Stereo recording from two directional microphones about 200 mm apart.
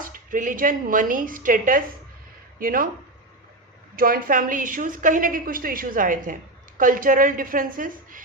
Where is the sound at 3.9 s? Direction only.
45° right (ahead or behind).